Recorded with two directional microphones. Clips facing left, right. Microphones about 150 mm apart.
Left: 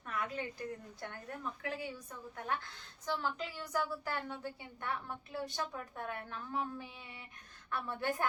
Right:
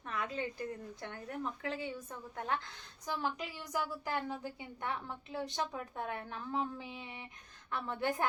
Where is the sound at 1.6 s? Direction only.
25° right (ahead or behind).